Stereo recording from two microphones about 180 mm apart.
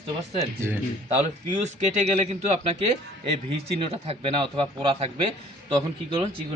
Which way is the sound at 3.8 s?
30° right (ahead or behind).